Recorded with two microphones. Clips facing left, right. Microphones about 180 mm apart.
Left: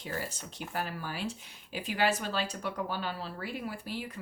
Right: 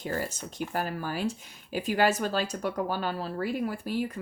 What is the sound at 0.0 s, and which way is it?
Speech, 45° right (ahead or behind).